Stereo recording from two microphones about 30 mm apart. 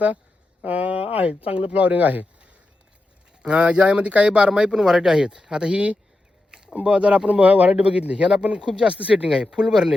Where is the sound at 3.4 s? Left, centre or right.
Right.